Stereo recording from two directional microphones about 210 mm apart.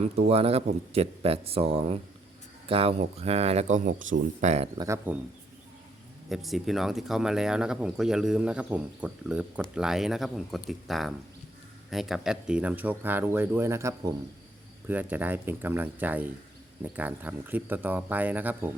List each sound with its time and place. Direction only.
0.0 s speech: 30° right (ahead or behind)
4.8 s speech: 10° right (ahead or behind)
6.2 s speech: centre (ahead or behind)